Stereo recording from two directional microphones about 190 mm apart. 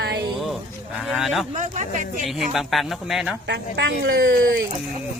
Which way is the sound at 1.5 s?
40° right (ahead or behind).